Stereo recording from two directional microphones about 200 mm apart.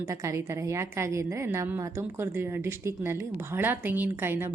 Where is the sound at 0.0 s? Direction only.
15° right (ahead or behind).